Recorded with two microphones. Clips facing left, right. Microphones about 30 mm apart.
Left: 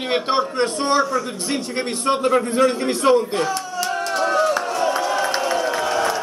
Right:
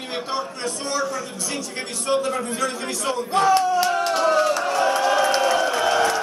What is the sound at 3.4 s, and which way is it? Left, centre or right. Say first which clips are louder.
Speech: right 6 dB; right.